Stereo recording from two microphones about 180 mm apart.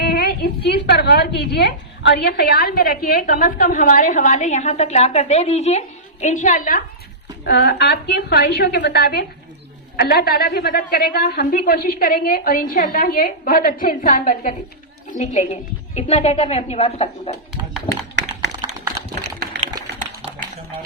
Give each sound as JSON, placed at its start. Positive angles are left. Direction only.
{"t": 0.0, "sound": "a woman's voice", "side_deg": 60}
{"t": 7.4, "sound": "a woman's voice", "side_deg": 60}